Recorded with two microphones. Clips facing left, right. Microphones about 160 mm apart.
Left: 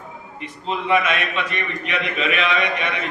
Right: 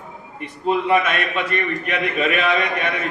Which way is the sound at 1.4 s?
50° right (ahead or behind).